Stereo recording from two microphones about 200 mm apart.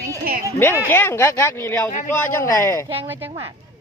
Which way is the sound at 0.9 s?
10° left (ahead or behind).